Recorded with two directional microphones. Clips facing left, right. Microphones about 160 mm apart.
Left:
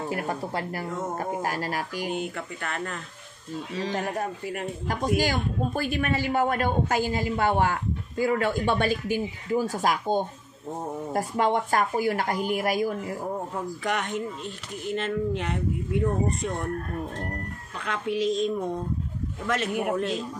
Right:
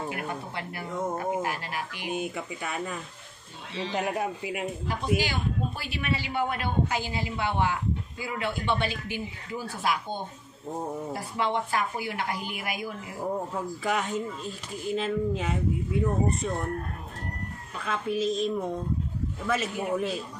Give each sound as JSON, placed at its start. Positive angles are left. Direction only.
{"t": 0.1, "sound": "speech", "side_deg": 40}
{"t": 2.0, "sound": "speech", "side_deg": -10}
{"t": 3.7, "sound": "speech", "side_deg": 40}
{"t": 4.0, "sound": "speech", "side_deg": -10}
{"t": 4.8, "sound": "a woman's voice", "side_deg": 45}
{"t": 13.8, "sound": "speech", "side_deg": -5}
{"t": 17.8, "sound": "speech", "side_deg": -5}
{"t": 19.7, "sound": "a man's voice", "side_deg": 60}